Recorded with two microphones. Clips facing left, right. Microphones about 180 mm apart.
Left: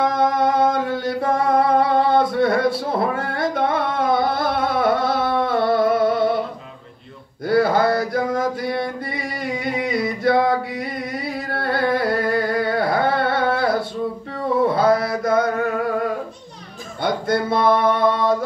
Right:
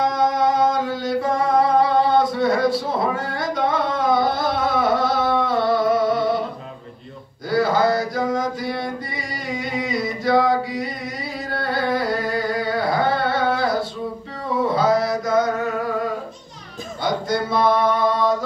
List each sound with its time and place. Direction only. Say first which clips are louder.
0.0 s music: left 1 dB; 55° left (ahead or behind)
5.4 s humming: left 1 dB; 55° left (ahead or behind)
7.4 s mantra: left 2 dB; 55° left (ahead or behind)
14.3 s music: left 3 dB; 55° left (ahead or behind)
17.0 s music: left 2 dB; 55° left (ahead or behind)